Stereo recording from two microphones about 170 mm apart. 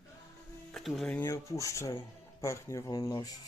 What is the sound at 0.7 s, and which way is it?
Speech, centre (ahead or behind).